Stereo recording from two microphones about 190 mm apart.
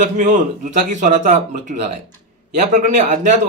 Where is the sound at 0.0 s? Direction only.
40° right (ahead or behind).